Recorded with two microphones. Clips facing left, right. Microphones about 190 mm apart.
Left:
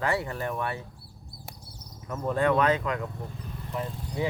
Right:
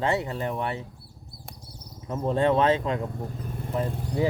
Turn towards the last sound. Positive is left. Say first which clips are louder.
# right 5 dB
turn(degrees=-60)  # may be behind; listen again after turning